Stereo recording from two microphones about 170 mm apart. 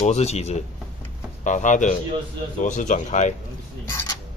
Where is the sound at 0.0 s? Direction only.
40° left (ahead or behind).